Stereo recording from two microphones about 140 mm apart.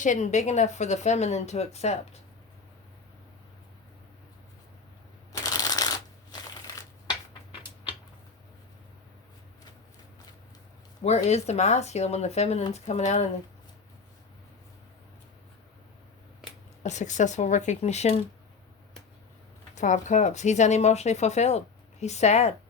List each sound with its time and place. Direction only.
0.0 s speech: 60° left (ahead or behind)
5.4 s shuffling cards: 25° left (ahead or behind)
11.0 s speech: 50° left (ahead or behind)
16.8 s speech: 60° left (ahead or behind)
19.7 s speech: 60° left (ahead or behind)